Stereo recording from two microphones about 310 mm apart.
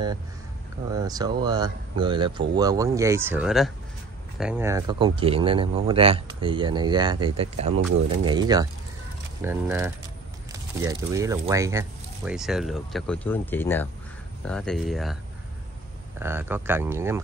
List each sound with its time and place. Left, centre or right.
0.9 s a man's voice: centre
16.2 s a man's voice: centre